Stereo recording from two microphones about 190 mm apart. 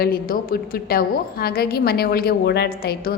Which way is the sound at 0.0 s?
50° left (ahead or behind).